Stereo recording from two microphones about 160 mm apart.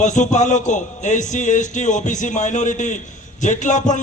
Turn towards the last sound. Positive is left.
turn(degrees=50)  # may be behind; listen again after turning